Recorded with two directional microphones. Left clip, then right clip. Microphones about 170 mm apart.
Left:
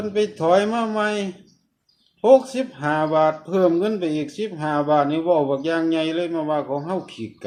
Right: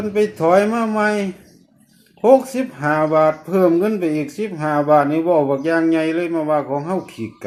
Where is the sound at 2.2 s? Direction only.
15° right (ahead or behind).